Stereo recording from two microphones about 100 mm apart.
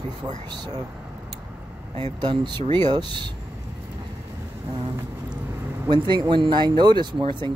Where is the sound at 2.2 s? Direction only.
50° right (ahead or behind).